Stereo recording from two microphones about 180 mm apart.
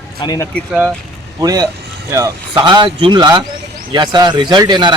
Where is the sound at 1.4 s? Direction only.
20° right (ahead or behind).